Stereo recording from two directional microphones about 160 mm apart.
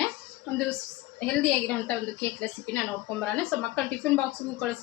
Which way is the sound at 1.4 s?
10° left (ahead or behind).